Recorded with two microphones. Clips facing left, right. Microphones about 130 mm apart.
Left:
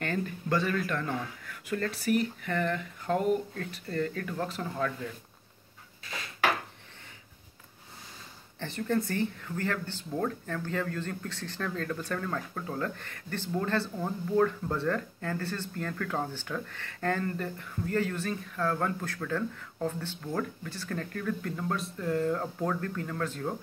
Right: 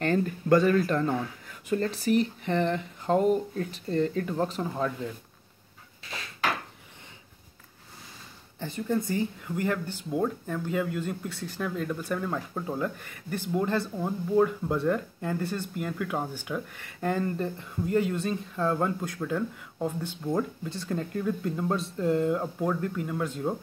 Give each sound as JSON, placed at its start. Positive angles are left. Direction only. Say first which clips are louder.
{"t": 0.0, "sound": "speech", "louder": "right 6 dB", "side_deg": -40}
{"t": 1.4, "sound": "speech", "louder": "right 4 dB", "side_deg": -20}
{"t": 8.5, "sound": "speech", "louder": "right 1 dB", "side_deg": -15}